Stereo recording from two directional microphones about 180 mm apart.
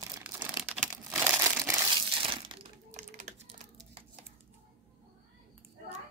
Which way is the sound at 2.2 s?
30° right (ahead or behind).